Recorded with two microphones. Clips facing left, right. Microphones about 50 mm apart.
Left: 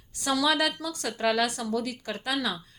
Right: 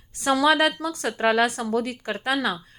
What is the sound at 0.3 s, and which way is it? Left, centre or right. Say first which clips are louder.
A woman's voice: right 6 dB; right.